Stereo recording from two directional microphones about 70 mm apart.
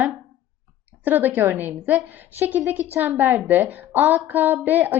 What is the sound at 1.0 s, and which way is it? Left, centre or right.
A woman's voice, right.